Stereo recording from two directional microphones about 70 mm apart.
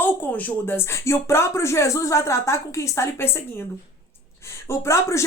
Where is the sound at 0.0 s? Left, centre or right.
Left.